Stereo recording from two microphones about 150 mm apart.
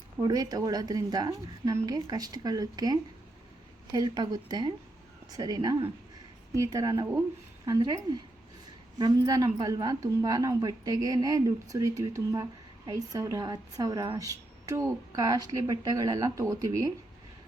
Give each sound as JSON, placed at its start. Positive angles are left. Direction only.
{"t": 0.2, "sound": "a woman's voice", "side_deg": -25}
{"t": 9.0, "sound": "a woman's voice", "side_deg": -25}